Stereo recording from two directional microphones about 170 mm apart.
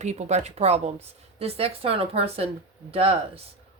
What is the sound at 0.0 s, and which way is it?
Speech, 40° right (ahead or behind).